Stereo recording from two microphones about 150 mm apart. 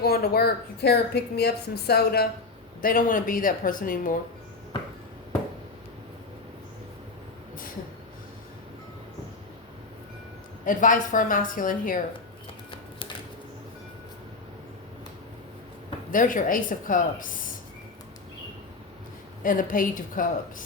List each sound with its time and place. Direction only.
0.0 s a woman's voice: 90° left
2.8 s speech: 65° left (ahead or behind)
10.7 s a woman's voice: 60° left (ahead or behind)
16.1 s a woman's voice: 65° left (ahead or behind)
19.4 s a woman's voice: 65° left (ahead or behind)